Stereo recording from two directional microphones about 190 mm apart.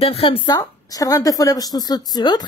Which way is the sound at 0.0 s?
30° left (ahead or behind).